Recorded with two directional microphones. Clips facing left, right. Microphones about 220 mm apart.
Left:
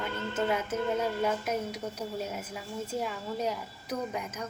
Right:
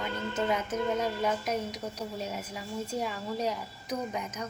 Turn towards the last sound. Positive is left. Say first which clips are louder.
# right 1 dB
turn(degrees=5)  # may be behind; listen again after turning